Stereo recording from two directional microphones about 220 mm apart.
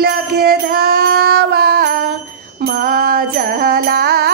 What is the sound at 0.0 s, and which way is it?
Female singing, 45° right (ahead or behind).